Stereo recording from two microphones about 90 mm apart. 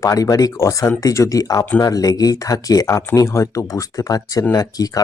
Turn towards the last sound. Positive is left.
turn(degrees=45)  # may be behind; listen again after turning